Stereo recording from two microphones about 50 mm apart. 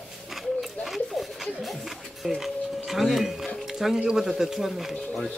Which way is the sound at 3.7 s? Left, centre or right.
Centre.